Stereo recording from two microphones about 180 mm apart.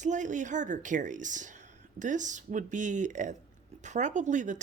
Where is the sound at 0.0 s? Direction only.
45° right (ahead or behind).